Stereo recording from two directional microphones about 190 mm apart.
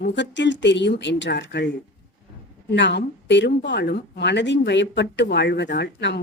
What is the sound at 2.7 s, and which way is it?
Speech, 65° left (ahead or behind).